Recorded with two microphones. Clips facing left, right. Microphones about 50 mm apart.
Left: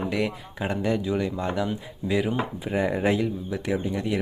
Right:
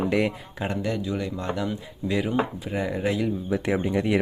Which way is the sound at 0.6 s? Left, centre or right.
Centre.